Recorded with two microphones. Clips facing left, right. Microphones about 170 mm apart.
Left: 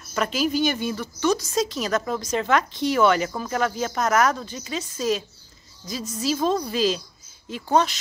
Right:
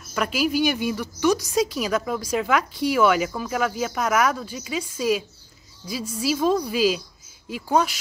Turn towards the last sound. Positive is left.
turn(degrees=-10)  # may be behind; listen again after turning